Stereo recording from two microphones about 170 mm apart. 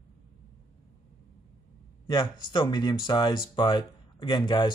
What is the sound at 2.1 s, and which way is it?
Speech, 25° left (ahead or behind).